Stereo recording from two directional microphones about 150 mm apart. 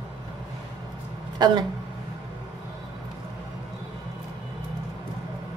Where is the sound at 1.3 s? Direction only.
30° right (ahead or behind).